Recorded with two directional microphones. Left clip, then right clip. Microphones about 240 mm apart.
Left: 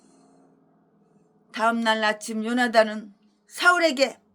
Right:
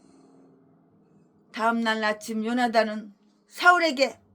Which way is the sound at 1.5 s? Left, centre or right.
Centre.